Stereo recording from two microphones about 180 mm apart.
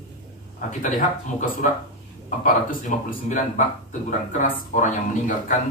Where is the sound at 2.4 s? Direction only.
45° left (ahead or behind).